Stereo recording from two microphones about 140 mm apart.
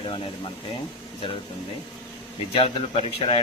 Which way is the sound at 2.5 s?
40° left (ahead or behind).